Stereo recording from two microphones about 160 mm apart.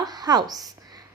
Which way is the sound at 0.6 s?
25° right (ahead or behind).